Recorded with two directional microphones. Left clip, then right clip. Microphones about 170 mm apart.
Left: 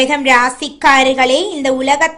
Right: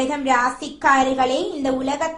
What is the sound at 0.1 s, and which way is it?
A woman's voice, 25° left (ahead or behind).